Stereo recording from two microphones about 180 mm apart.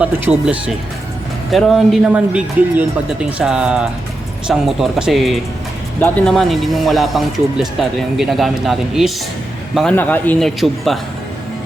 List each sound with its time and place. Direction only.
0.0 s speech: 5° right (ahead or behind)